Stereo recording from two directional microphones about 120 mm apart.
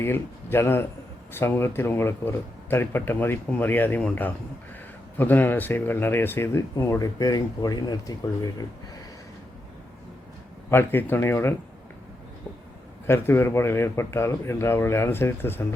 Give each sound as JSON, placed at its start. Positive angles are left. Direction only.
{"t": 0.0, "sound": "speech", "side_deg": 20}
{"t": 10.7, "sound": "speech", "side_deg": 20}
{"t": 13.1, "sound": "speech", "side_deg": 20}